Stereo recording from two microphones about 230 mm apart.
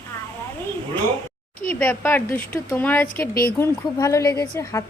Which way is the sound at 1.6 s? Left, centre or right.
Centre.